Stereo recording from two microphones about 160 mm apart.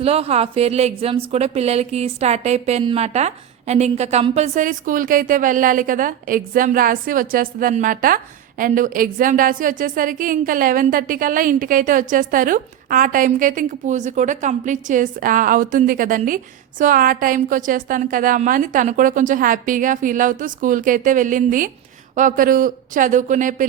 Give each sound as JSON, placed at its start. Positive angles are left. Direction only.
{"t": 0.0, "sound": "a woman's voice", "side_deg": -40}